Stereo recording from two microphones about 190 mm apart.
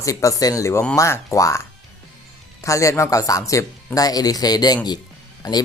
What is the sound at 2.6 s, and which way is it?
Speech, 15° left (ahead or behind).